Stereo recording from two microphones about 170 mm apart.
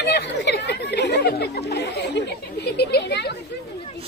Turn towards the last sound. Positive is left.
turn(degrees=80)